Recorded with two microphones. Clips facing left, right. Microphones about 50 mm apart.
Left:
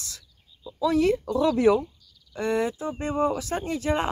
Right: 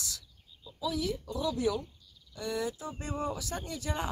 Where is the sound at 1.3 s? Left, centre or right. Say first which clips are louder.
Left 10 dB; left.